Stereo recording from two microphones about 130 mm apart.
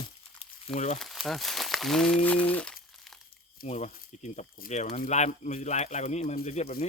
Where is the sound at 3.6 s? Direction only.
60° left (ahead or behind).